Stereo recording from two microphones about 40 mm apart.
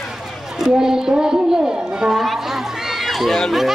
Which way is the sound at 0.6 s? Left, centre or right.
Centre.